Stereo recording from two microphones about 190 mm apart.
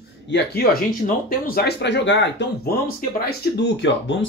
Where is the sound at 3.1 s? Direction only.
60° left (ahead or behind).